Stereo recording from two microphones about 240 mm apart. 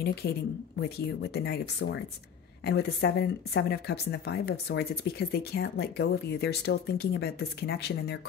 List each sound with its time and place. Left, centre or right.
0.0 s speech: left